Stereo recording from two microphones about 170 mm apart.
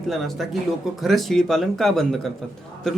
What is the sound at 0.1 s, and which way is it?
A man's voice, centre (ahead or behind).